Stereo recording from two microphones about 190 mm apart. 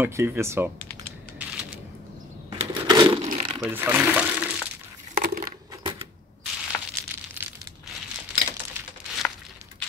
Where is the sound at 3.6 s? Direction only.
10° right (ahead or behind).